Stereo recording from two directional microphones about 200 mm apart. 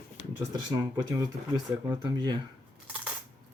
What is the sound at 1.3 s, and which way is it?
Speech, 35° right (ahead or behind).